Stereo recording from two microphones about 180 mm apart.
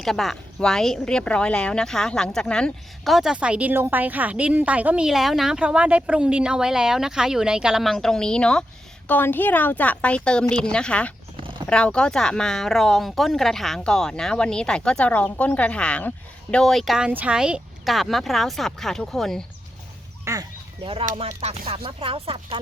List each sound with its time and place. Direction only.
0.0 s a woman's voice: centre (ahead or behind)
11.3 s a sound: 30° right (ahead or behind)
11.7 s speech: 5° left (ahead or behind)
20.2 s speech: 20° right (ahead or behind)
21.2 s a sound: 35° right (ahead or behind)
21.8 s speech: 30° right (ahead or behind)